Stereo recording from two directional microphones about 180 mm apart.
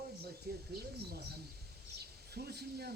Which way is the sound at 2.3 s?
60° right (ahead or behind).